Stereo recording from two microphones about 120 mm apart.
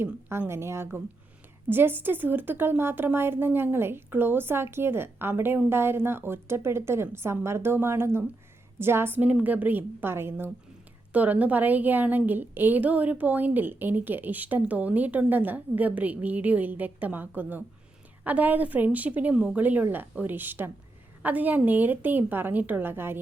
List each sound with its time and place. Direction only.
0.0 s a woman's voice: 20° right (ahead or behind)